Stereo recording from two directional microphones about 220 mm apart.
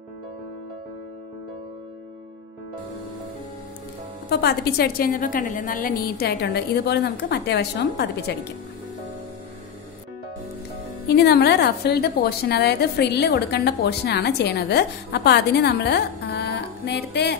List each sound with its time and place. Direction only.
4.3 s a woman's voice: 50° left (ahead or behind)
11.1 s a woman's voice: 50° left (ahead or behind)